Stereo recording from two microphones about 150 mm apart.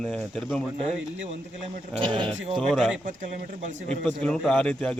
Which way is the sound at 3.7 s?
55° right (ahead or behind).